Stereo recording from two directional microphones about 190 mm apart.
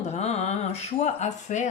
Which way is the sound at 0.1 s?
35° left (ahead or behind).